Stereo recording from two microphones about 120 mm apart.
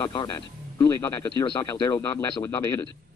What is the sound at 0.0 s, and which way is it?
Speech, 40° left (ahead or behind).